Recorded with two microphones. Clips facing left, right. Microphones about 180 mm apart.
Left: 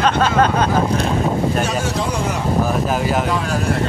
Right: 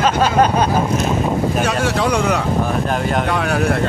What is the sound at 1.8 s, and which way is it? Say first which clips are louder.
Speech: right 4 dB; 70° right (ahead or behind).